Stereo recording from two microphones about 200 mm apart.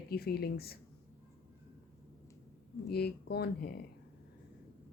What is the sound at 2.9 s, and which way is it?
Speech, 50° left (ahead or behind).